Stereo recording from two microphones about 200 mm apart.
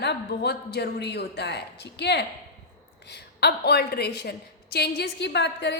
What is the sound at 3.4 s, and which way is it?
A woman's voice, 55° left (ahead or behind).